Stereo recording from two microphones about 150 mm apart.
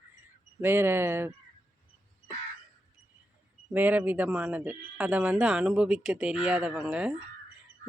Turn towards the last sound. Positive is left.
turn(degrees=-5)  # may be behind; listen again after turning